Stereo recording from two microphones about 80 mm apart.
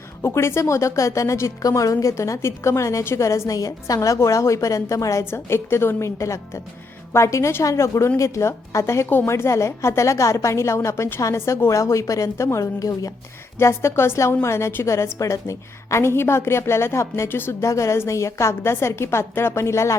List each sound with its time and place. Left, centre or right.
0.2 s a woman's voice: left